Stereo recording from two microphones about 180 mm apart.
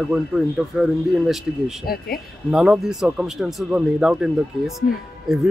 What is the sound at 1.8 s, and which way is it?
Speech, 60° left (ahead or behind).